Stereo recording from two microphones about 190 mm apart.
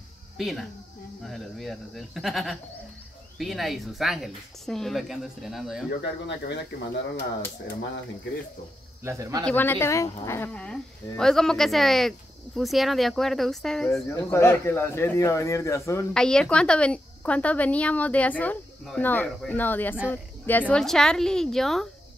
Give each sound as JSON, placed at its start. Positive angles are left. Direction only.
{"t": 0.4, "sound": "speech", "side_deg": 0}
{"t": 6.2, "sound": "speech", "side_deg": 65}
{"t": 9.0, "sound": "speech", "side_deg": -15}
{"t": 9.4, "sound": "speech", "side_deg": 10}
{"t": 16.1, "sound": "a woman's voice", "side_deg": 5}